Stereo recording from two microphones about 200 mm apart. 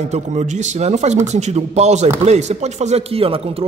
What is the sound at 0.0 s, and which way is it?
A man's voice, 35° right (ahead or behind).